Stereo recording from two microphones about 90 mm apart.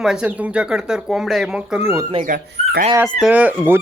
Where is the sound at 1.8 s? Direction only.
25° right (ahead or behind).